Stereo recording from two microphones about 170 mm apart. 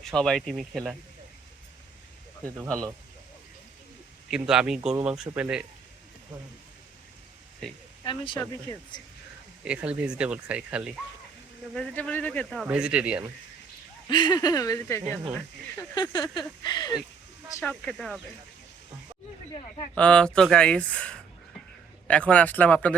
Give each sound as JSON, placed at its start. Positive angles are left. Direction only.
{"t": 0.0, "sound": "speech", "side_deg": 5}
{"t": 4.3, "sound": "speech", "side_deg": -5}
{"t": 8.0, "sound": "speech", "side_deg": 30}
{"t": 9.6, "sound": "speech", "side_deg": -5}
{"t": 11.7, "sound": "speech", "side_deg": 5}
{"t": 14.1, "sound": "speech", "side_deg": 25}
{"t": 17.6, "sound": "speech", "side_deg": 5}
{"t": 20.0, "sound": "speech", "side_deg": 5}